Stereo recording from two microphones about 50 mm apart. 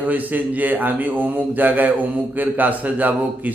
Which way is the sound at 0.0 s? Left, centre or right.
Right.